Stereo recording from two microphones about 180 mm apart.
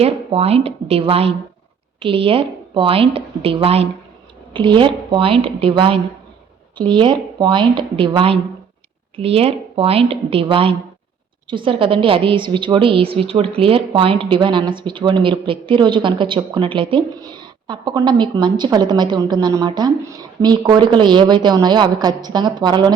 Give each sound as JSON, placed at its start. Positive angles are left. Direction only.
{"t": 0.0, "sound": "a woman's voice", "side_deg": -35}